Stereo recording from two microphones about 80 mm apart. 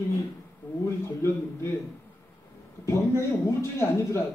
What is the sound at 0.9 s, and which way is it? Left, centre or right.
Speech, left.